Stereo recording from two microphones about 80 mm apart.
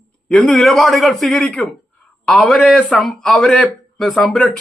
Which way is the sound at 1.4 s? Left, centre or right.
Centre.